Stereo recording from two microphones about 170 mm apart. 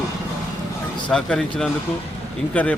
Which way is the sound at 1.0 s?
5° left (ahead or behind).